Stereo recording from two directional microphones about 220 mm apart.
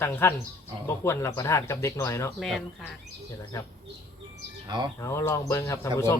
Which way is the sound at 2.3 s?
Centre (ahead or behind).